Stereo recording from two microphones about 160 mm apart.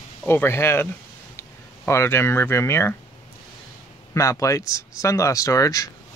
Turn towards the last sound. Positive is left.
turn(degrees=20)  # may be behind; listen again after turning